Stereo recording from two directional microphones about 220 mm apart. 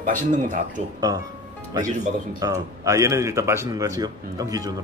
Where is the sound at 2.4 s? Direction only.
15° right (ahead or behind).